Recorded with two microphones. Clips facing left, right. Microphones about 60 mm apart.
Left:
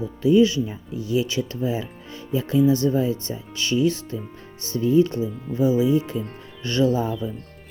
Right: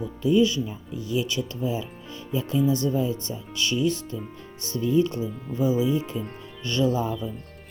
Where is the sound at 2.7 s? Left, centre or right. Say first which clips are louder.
Left 4 dB; left.